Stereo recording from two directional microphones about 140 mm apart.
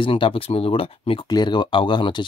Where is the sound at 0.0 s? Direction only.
40° left (ahead or behind).